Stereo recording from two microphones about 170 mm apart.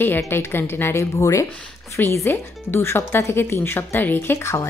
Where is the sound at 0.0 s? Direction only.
10° left (ahead or behind).